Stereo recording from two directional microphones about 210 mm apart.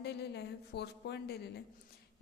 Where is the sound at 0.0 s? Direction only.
55° left (ahead or behind).